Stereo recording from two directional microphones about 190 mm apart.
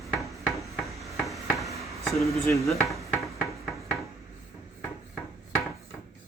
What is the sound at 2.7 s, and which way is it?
Speech, centre (ahead or behind).